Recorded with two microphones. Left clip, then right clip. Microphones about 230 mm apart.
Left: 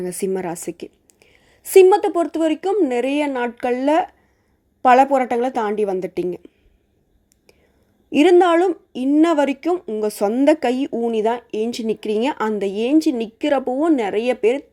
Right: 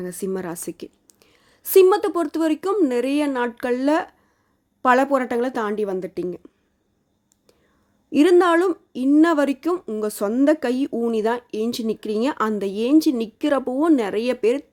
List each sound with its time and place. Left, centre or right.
0.0 s a woman's voice: centre
8.1 s speech: centre